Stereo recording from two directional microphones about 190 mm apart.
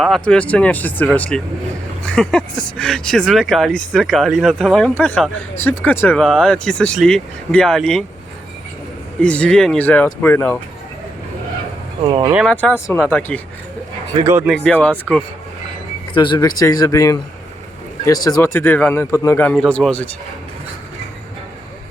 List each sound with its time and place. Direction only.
0.0 s a man's voice: 5° left (ahead or behind)
9.2 s a man's voice: 5° left (ahead or behind)
12.0 s speech: 25° right (ahead or behind)
12.3 s speech: 5° right (ahead or behind)
12.5 s a man's voice: 10° left (ahead or behind)
14.5 s a man's voice: 5° left (ahead or behind)
16.1 s a man's voice: 25° left (ahead or behind); by 20.1 s 5° left (ahead or behind)